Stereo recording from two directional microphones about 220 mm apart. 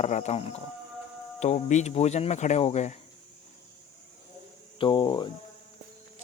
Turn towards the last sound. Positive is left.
turn(degrees=20)  # may be behind; listen again after turning